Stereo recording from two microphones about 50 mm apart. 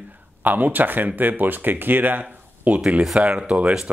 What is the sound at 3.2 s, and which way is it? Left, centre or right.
Speech, right.